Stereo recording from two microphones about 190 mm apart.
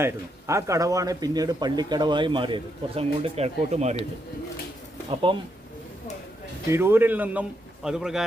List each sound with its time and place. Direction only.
0.0 s a man's voice: 15° right (ahead or behind); by 3.9 s 35° right (ahead or behind)
5.1 s a man's voice: 25° right (ahead or behind)
6.7 s a man's voice: 10° right (ahead or behind)